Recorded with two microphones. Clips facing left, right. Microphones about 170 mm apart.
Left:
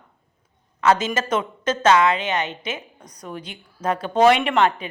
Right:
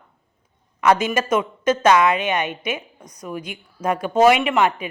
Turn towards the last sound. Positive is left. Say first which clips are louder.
# even
turn(degrees=-5)  # may be behind; listen again after turning